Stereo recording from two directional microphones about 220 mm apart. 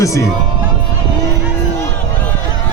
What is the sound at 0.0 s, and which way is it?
Speech, 15° left (ahead or behind).